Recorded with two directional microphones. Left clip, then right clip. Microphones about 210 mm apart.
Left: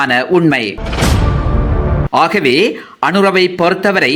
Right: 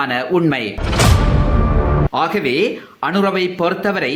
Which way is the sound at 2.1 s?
25° left (ahead or behind).